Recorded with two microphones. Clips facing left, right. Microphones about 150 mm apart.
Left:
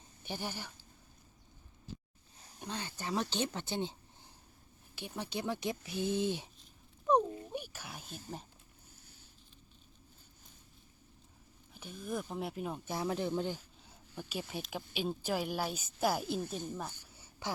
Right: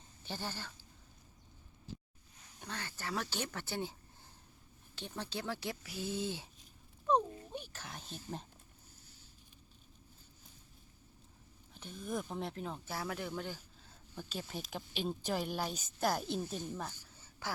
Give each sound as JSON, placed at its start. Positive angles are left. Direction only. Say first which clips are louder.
{"t": 0.3, "sound": "speech", "louder": "left 2 dB", "side_deg": 15}
{"t": 2.3, "sound": "a sound", "louder": "left 3 dB", "side_deg": 35}
{"t": 2.6, "sound": "speech", "louder": "left 3 dB", "side_deg": 20}
{"t": 4.9, "sound": "speech", "louder": "left 2 dB", "side_deg": 15}
{"t": 7.1, "sound": "a sound", "louder": "left 3 dB", "side_deg": 10}
{"t": 7.5, "sound": "speech", "louder": "left 3 dB", "side_deg": 10}
{"t": 11.7, "sound": "speech", "louder": "left 1 dB", "side_deg": 5}
{"t": 14.2, "sound": "speech", "louder": "left 2 dB", "side_deg": 10}